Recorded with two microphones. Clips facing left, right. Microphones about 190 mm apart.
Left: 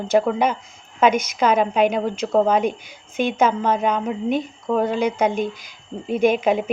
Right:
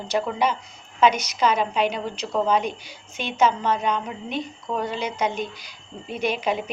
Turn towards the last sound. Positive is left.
turn(degrees=50)  # may be behind; listen again after turning